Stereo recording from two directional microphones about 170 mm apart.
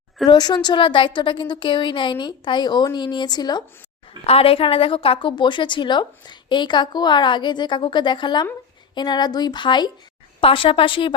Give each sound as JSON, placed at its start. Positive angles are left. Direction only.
{"t": 0.3, "sound": "a woman's voice", "side_deg": 25}
{"t": 4.3, "sound": "a woman's voice", "side_deg": 35}